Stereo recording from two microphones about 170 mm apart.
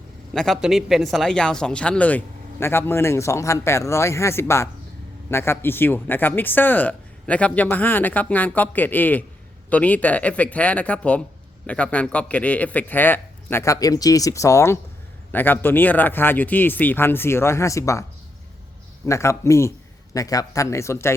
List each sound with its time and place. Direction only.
0.3 s speech: centre (ahead or behind); by 18.0 s 20° left (ahead or behind)
19.0 s speech: 15° left (ahead or behind)